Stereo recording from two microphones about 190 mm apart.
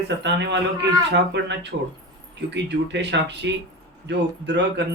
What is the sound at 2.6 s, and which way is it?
Speech, 65° right (ahead or behind).